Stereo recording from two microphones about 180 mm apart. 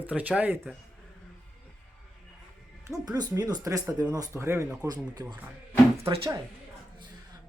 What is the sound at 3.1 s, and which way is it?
Speech, 20° right (ahead or behind).